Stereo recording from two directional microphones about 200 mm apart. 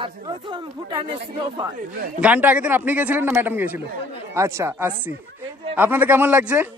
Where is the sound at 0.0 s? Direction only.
25° right (ahead or behind).